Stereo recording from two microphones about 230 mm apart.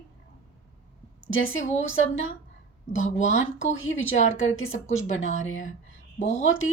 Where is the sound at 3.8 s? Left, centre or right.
Left.